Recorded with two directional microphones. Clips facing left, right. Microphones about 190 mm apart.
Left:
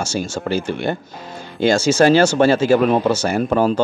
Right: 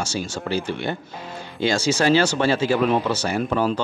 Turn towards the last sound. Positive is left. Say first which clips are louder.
# left 5 dB
turn(degrees=45)  # may be behind; listen again after turning